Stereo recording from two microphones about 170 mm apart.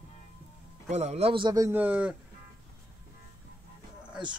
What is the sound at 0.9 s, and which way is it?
Speech, 40° right (ahead or behind).